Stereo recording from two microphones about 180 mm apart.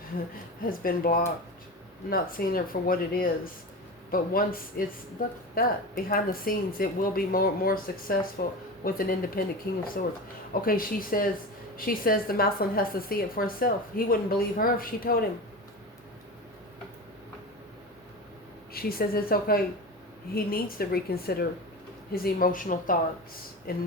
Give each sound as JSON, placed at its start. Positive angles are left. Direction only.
{"t": 0.6, "sound": "a woman's voice", "side_deg": 50}
{"t": 18.7, "sound": "a woman's voice", "side_deg": 55}